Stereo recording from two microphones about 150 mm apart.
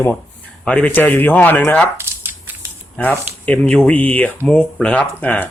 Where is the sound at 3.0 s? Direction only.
10° left (ahead or behind).